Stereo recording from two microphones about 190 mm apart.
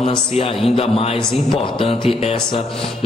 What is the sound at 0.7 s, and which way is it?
Speech, 30° left (ahead or behind).